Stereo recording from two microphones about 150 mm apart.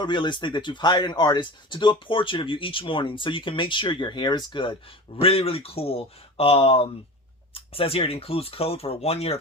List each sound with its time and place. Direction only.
0.0 s speech: 30° left (ahead or behind)